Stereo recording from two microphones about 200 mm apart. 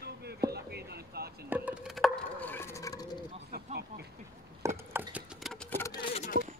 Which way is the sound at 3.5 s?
50° right (ahead or behind).